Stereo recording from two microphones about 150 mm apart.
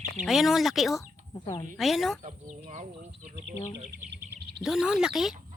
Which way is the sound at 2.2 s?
55° right (ahead or behind).